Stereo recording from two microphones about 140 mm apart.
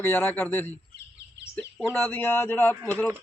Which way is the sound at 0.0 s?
15° left (ahead or behind).